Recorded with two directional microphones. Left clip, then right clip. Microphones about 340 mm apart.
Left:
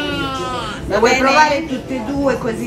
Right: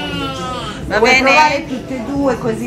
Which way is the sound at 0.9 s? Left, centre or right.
Centre.